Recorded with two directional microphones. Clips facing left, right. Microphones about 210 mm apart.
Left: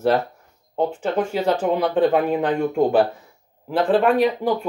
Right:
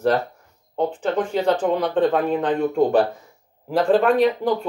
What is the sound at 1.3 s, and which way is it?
Speech, 10° left (ahead or behind).